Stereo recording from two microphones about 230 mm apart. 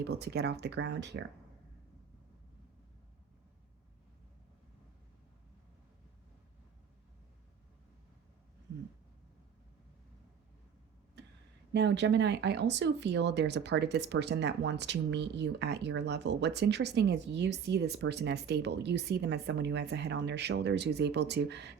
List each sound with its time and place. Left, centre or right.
0.0 s speech: right
11.7 s speech: right